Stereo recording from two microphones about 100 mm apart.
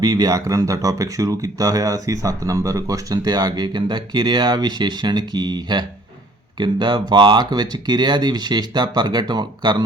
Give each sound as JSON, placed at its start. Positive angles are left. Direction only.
{"t": 0.0, "sound": "speech", "side_deg": -40}